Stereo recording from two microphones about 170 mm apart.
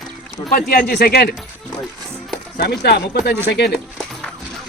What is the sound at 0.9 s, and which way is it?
Speech, 70° left (ahead or behind).